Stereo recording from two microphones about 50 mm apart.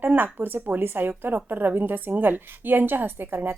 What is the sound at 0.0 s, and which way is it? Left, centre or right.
A woman's voice, right.